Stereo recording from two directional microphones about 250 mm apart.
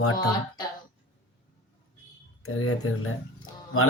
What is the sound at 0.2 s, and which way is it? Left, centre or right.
Speech, centre.